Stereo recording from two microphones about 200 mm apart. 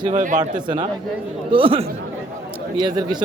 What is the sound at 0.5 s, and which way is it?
A man's voice, 25° right (ahead or behind).